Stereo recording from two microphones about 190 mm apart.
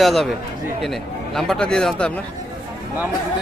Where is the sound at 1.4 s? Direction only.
5° left (ahead or behind).